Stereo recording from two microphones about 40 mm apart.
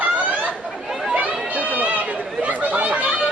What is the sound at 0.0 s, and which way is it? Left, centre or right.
Chatter, right.